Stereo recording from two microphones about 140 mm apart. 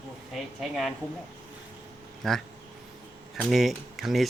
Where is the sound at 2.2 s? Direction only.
Centre (ahead or behind).